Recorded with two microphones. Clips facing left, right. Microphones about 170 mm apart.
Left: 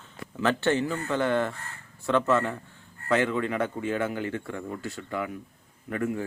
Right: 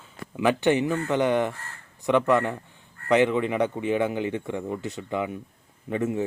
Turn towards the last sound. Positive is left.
turn(degrees=-20)  # may be behind; listen again after turning